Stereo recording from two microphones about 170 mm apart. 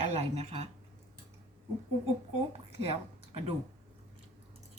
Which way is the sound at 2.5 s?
35° right (ahead or behind).